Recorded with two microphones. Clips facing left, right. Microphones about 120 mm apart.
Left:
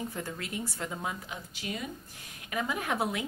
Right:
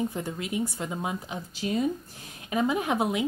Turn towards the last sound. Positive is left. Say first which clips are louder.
# right 5 dB
turn(degrees=-20)  # may be behind; listen again after turning